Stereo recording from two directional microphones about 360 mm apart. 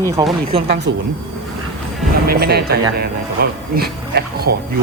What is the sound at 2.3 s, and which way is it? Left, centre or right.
Speech, right.